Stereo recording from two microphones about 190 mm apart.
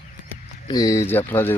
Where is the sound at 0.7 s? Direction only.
20° left (ahead or behind).